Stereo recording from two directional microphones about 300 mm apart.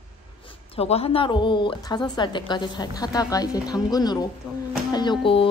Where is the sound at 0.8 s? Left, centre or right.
Centre.